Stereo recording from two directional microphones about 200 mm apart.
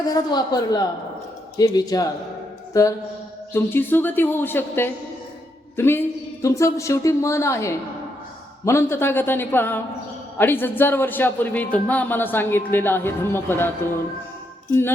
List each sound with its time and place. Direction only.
0.0 s a woman's voice: 20° left (ahead or behind)
3.5 s speech: 10° left (ahead or behind)